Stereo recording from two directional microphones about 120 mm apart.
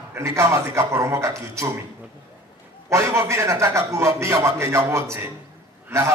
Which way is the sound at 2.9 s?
25° right (ahead or behind).